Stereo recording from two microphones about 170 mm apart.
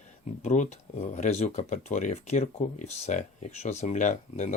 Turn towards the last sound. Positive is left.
turn(degrees=45)  # may be behind; listen again after turning